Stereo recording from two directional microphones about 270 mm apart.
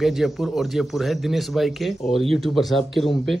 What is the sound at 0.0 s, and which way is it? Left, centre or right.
Speech, centre.